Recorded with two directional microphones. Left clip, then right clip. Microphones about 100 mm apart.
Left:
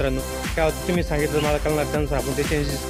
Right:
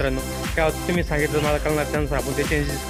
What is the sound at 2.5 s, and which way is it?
Speech, 35° left (ahead or behind).